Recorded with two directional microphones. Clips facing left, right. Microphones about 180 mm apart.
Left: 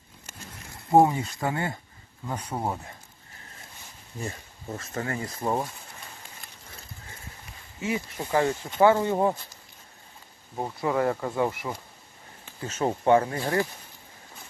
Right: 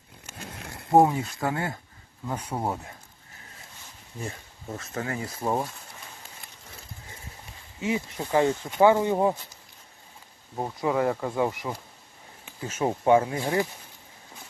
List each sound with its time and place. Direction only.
0.3 s a sound: 70° right (ahead or behind)
0.9 s speech: centre (ahead or behind)
4.7 s speech: centre (ahead or behind)
7.8 s speech: 20° right (ahead or behind)
10.6 s speech: 10° right (ahead or behind)
11.3 s speech: 15° right (ahead or behind)